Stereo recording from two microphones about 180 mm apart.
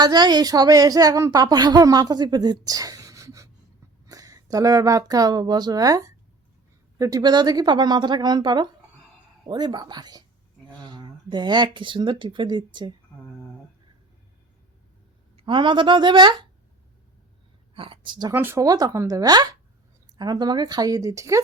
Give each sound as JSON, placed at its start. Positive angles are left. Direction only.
{"t": 0.0, "sound": "a woman's voice", "side_deg": -25}
{"t": 15.4, "sound": "a woman's voice", "side_deg": -25}
{"t": 17.7, "sound": "speech", "side_deg": -30}
{"t": 18.3, "sound": "a woman's voice", "side_deg": -15}